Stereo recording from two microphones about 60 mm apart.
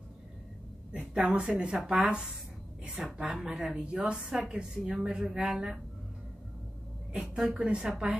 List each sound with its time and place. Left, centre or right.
0.9 s a woman's voice: centre
7.1 s a woman's voice: centre